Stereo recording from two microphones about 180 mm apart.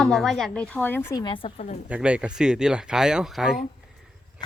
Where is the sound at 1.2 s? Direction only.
30° left (ahead or behind).